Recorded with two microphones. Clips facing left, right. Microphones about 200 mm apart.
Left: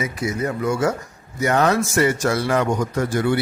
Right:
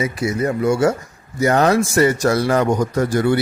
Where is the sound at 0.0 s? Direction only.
30° right (ahead or behind).